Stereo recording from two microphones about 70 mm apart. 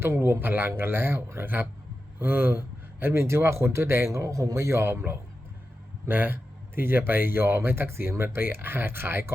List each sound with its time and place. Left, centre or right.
0.0 s speech: right